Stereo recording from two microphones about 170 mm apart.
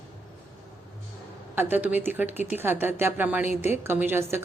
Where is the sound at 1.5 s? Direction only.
10° right (ahead or behind).